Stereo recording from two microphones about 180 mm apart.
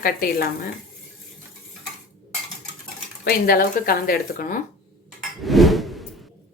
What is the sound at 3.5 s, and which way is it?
Speech, 55° left (ahead or behind).